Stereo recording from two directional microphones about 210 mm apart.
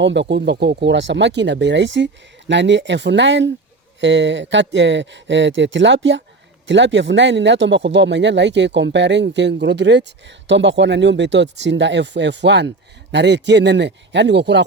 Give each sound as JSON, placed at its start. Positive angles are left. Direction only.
{"t": 0.0, "sound": "speech", "side_deg": -60}